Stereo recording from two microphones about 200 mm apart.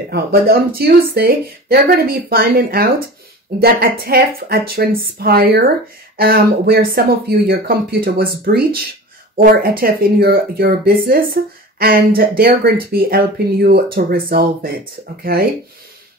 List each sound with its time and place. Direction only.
0.1 s speech: 50° right (ahead or behind)